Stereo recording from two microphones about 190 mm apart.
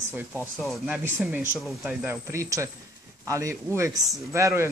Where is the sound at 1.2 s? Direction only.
5° right (ahead or behind).